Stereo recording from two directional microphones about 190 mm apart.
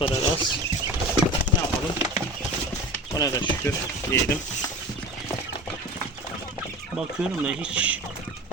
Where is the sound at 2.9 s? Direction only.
20° left (ahead or behind).